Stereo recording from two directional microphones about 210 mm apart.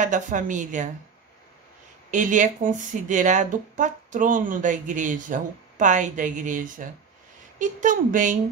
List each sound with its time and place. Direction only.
0.0 s speech: 35° right (ahead or behind)
2.0 s speech: 35° right (ahead or behind)